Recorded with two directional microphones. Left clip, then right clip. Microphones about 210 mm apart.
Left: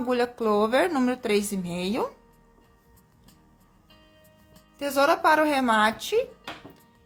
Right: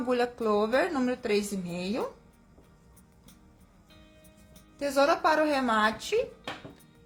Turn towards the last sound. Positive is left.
turn(degrees=25)  # may be behind; listen again after turning